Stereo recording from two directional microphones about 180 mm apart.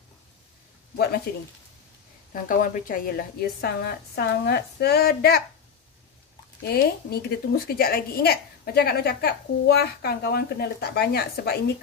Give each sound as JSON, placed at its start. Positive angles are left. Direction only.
{"t": 0.9, "sound": "speech", "side_deg": 60}
{"t": 2.3, "sound": "a woman's voice", "side_deg": 50}
{"t": 6.6, "sound": "a woman's voice", "side_deg": 60}